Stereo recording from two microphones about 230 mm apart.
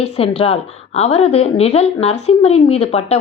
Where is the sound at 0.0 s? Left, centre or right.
Left.